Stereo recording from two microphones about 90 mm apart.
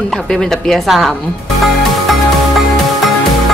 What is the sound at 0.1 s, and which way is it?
A woman's voice, 5° left (ahead or behind).